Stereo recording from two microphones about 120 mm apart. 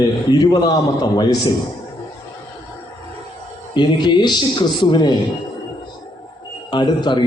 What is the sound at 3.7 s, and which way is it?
A man's voice, 40° left (ahead or behind).